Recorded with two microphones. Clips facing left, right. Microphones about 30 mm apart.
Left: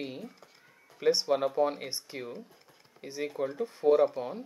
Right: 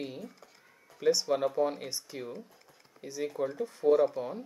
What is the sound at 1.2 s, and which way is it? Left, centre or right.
Speech, centre.